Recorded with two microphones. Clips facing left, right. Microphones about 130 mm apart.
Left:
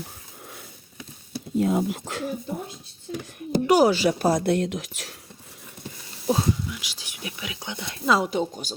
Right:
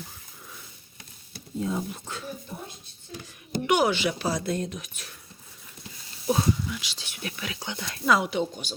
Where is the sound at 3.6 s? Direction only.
35° left (ahead or behind).